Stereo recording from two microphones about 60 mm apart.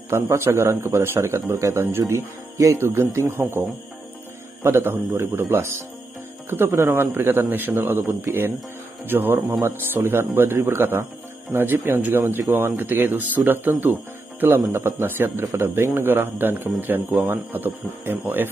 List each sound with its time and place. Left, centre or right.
0.1 s a man's voice: right
2.5 s speech: right
2.8 s a man's voice: right
3.3 s speech: right
4.6 s a man's voice: right
14.7 s speech: right